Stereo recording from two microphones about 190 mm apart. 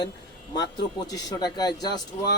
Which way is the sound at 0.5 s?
20° left (ahead or behind).